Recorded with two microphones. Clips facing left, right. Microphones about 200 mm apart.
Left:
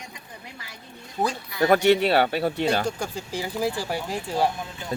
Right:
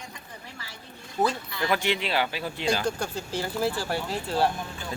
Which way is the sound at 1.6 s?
45° left (ahead or behind).